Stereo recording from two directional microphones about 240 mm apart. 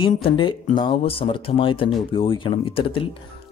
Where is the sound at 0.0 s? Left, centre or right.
Left.